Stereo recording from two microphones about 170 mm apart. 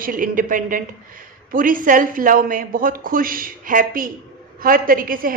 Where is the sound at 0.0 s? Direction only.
55° right (ahead or behind).